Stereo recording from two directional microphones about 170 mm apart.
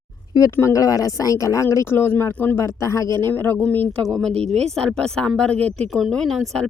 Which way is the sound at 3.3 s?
5° left (ahead or behind).